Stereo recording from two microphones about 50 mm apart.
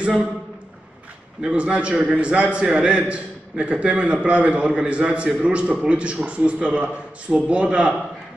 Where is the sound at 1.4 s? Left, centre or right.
Right.